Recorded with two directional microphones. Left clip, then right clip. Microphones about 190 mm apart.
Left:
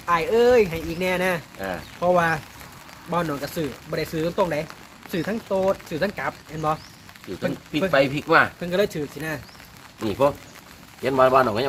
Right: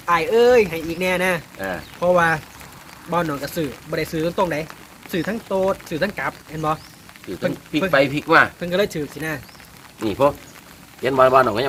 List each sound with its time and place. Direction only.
0.0 s speech: centre (ahead or behind)
1.6 s speech: 10° right (ahead or behind)
2.0 s speech: 15° left (ahead or behind)
7.7 s speech: 10° right (ahead or behind)
8.6 s speech: 15° left (ahead or behind)
10.0 s speech: 10° right (ahead or behind)